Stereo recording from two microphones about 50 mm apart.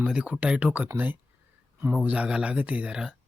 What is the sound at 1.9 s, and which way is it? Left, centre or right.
Speech, right.